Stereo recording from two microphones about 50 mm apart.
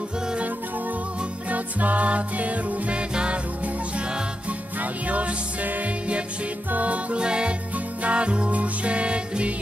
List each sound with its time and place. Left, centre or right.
1.5 s music: right